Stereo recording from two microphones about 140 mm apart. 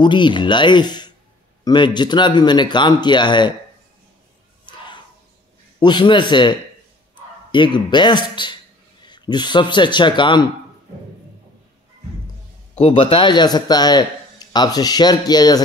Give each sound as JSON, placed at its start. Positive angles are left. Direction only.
{"t": 0.0, "sound": "speech", "side_deg": 35}
{"t": 4.6, "sound": "a sound", "side_deg": 35}
{"t": 5.8, "sound": "a man's voice", "side_deg": 35}
{"t": 12.7, "sound": "speech", "side_deg": 45}